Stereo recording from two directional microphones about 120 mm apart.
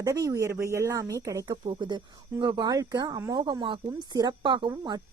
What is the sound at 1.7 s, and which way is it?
Speech, 40° right (ahead or behind).